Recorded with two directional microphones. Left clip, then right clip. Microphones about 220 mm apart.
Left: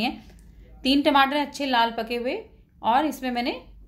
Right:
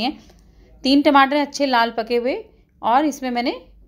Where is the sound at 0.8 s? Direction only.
30° right (ahead or behind).